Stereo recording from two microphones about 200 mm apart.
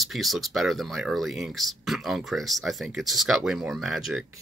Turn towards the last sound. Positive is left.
turn(degrees=-5)  # may be behind; listen again after turning